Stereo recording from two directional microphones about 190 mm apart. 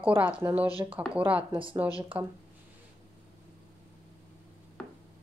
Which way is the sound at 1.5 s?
30° right (ahead or behind).